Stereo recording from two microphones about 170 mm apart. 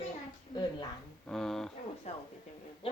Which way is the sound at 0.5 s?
25° left (ahead or behind).